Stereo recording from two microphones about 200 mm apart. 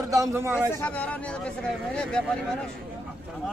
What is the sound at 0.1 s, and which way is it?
Speech, 15° right (ahead or behind).